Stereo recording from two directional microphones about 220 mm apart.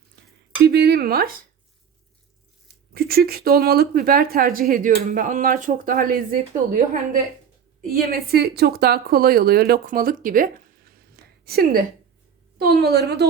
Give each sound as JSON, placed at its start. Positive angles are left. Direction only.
{"t": 0.6, "sound": "speech", "side_deg": -45}
{"t": 2.9, "sound": "a woman's voice", "side_deg": -45}